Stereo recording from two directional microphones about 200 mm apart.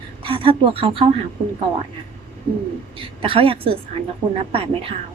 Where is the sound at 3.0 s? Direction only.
25° right (ahead or behind).